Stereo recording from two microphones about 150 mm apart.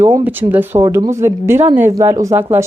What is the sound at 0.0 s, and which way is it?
Speech, 15° right (ahead or behind).